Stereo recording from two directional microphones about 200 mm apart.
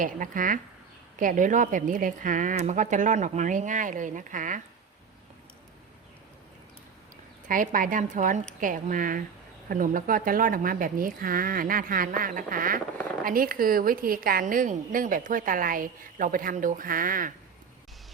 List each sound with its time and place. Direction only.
0.0 s a woman's voice: 40° right (ahead or behind)
7.4 s a woman's voice: 40° right (ahead or behind)